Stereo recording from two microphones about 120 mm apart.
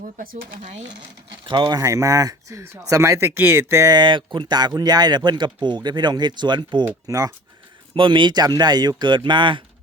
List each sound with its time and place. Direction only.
0.6 s speech: 70° right (ahead or behind)
1.5 s speech: 40° right (ahead or behind)
1.8 s speech: 25° right (ahead or behind)
3.9 s speech: 40° right (ahead or behind)
7.9 s speech: 45° right (ahead or behind)